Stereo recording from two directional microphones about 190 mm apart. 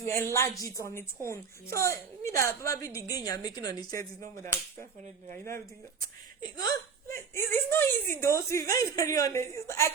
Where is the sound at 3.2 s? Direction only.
20° left (ahead or behind).